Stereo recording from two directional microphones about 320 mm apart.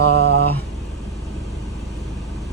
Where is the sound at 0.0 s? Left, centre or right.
Right.